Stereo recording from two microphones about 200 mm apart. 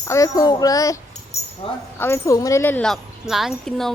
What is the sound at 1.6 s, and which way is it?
Speech, 25° left (ahead or behind).